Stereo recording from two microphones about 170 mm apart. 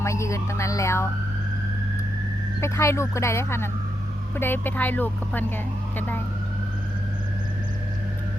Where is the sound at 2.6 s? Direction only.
15° left (ahead or behind).